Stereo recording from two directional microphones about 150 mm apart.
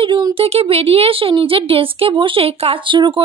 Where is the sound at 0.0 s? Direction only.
35° right (ahead or behind).